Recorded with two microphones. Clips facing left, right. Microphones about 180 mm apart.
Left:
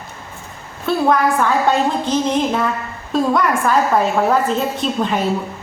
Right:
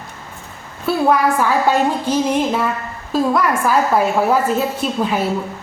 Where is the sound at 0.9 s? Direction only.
5° right (ahead or behind).